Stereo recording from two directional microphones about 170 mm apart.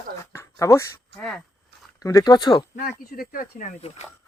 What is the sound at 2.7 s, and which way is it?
Speech, 60° left (ahead or behind).